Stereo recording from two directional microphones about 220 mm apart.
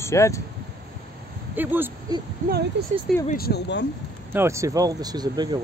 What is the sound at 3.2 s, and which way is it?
Speech, 45° left (ahead or behind).